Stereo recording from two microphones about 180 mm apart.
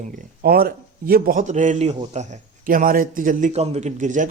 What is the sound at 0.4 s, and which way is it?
A man's voice, 60° right (ahead or behind).